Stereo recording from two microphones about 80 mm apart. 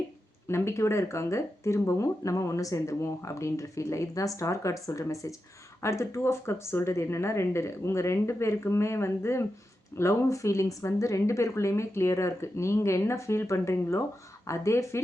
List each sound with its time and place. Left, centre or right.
0.4 s speech: left